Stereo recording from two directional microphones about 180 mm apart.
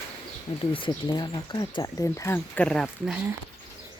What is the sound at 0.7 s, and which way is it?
Speech, 25° left (ahead or behind).